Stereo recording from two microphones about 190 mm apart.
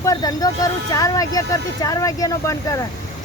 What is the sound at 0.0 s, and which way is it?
Speech, 20° left (ahead or behind).